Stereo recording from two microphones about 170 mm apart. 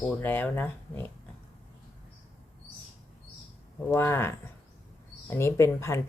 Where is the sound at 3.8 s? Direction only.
15° left (ahead or behind).